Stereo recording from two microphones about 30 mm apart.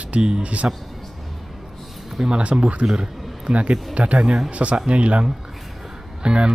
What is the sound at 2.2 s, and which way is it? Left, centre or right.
Speech, centre.